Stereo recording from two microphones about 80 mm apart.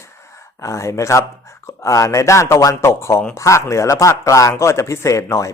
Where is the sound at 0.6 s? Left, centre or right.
Left.